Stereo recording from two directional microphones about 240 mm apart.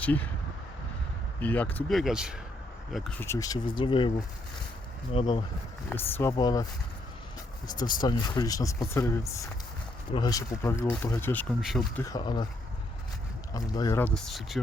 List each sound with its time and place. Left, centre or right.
0.0 s speech: centre
1.4 s speech: centre
5.1 s speech: left
5.9 s speech: centre
7.7 s speech: centre
12.0 s speech: centre
13.5 s speech: centre